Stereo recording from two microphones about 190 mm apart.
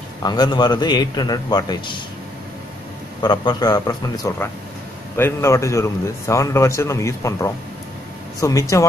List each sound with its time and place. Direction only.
0.2 s a man's voice: 20° left (ahead or behind)
3.2 s a man's voice: 20° left (ahead or behind)